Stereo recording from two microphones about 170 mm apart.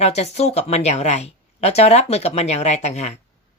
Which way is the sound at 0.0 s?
40° left (ahead or behind).